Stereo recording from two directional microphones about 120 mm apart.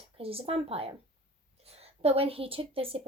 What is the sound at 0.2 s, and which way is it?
Speech, 55° right (ahead or behind).